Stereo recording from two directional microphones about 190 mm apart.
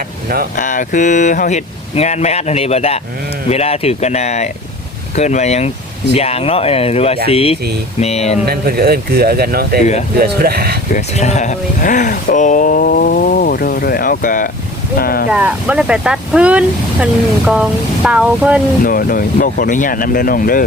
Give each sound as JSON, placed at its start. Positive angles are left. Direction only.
{"t": 0.5, "sound": "speech", "side_deg": 45}
{"t": 8.4, "sound": "speech", "side_deg": -55}
{"t": 10.9, "sound": "speech", "side_deg": 35}
{"t": 15.3, "sound": "speech", "side_deg": -5}
{"t": 18.9, "sound": "speech", "side_deg": 50}